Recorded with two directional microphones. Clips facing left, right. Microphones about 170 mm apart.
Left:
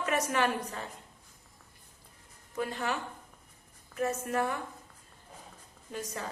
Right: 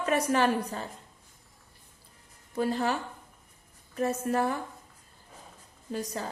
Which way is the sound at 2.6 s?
35° right (ahead or behind).